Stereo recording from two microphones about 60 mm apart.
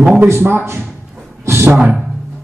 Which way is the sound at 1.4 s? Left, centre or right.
Right.